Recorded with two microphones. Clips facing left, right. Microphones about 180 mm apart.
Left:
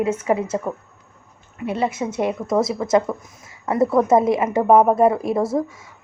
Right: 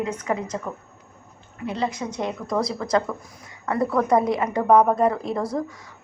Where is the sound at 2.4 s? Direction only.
25° left (ahead or behind).